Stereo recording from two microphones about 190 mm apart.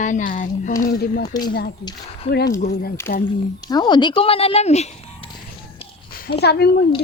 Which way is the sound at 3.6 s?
20° left (ahead or behind).